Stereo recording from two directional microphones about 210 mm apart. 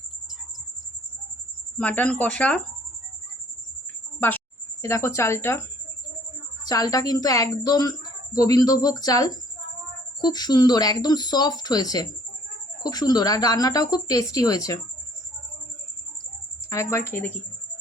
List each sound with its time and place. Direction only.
1.8 s a woman's voice: 5° left (ahead or behind)
4.8 s a woman's voice: 15° left (ahead or behind)
6.7 s a woman's voice: 15° left (ahead or behind)
16.6 s a woman's voice: 15° left (ahead or behind)